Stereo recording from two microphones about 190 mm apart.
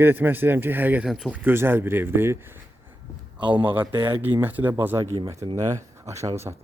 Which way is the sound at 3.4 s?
25° right (ahead or behind).